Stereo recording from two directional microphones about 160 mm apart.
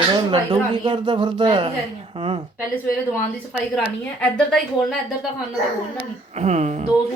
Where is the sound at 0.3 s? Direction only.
30° right (ahead or behind).